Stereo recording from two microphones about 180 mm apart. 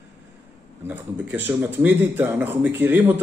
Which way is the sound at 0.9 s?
10° right (ahead or behind).